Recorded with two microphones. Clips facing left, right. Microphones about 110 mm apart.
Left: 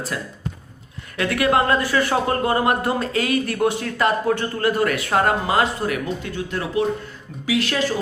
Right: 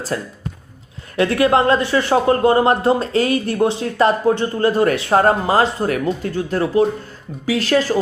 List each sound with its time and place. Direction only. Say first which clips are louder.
0.1 s speech: right 4 dB; 35° right (ahead or behind)